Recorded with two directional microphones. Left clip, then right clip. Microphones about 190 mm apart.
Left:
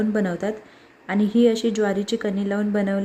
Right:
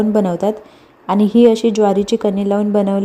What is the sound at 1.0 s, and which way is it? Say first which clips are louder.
A woman's voice: right 8 dB; 20° right (ahead or behind).